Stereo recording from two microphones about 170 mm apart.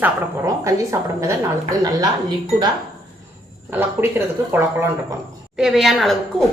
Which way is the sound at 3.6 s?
10° right (ahead or behind).